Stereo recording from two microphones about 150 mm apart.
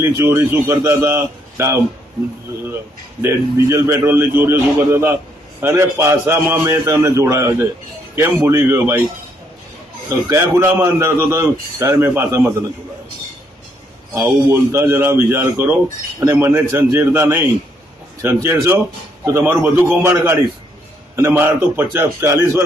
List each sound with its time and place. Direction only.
0.0 s a man's voice: 15° right (ahead or behind)
3.2 s a man's voice: 15° right (ahead or behind)
10.2 s a man's voice: 15° right (ahead or behind)
14.1 s a man's voice: 15° right (ahead or behind)